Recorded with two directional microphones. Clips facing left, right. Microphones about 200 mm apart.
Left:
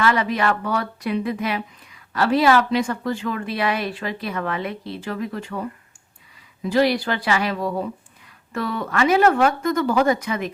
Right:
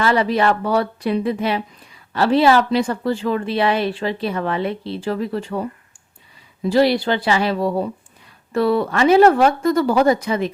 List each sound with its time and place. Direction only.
0.0 s a woman's voice: 35° right (ahead or behind)